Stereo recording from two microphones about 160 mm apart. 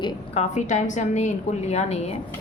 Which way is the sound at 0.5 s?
50° left (ahead or behind).